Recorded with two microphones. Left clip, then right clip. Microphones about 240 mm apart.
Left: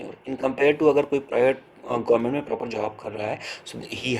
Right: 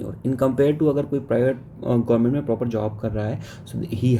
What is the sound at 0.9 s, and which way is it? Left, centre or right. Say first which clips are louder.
Speech: left 1 dB; centre.